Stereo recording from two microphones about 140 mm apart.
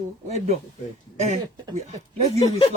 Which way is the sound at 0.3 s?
50° right (ahead or behind).